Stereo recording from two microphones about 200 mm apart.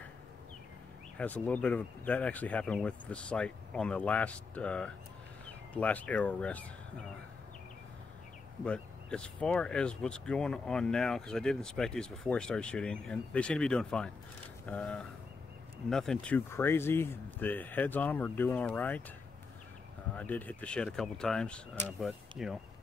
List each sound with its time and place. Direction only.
1.1 s speech: 10° left (ahead or behind)
8.6 s speech: 5° left (ahead or behind)
20.2 s speech: 10° left (ahead or behind)